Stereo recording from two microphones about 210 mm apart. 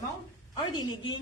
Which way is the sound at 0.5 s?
20° left (ahead or behind).